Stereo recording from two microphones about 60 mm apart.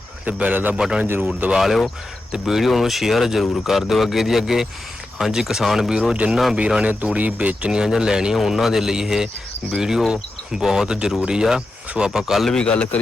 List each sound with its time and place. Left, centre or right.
0.3 s a man's voice: right
0.8 s speech: centre
1.0 s speech: right
1.3 s a man's voice: centre
1.5 s speech: centre
6.1 s a man's voice: centre
12.5 s a man's voice: centre